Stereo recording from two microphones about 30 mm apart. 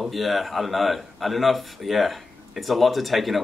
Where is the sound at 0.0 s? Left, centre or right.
Centre.